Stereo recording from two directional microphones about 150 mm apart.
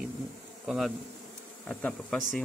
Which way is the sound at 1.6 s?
5° left (ahead or behind).